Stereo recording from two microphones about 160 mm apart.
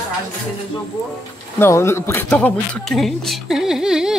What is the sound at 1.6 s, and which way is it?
Speech, 15° left (ahead or behind).